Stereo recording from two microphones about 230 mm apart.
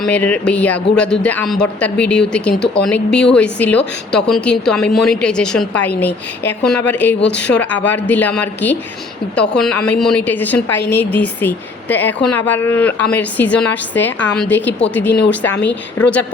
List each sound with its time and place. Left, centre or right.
0.0 s a woman's voice: centre
7.2 s speech: left
7.4 s a woman's voice: centre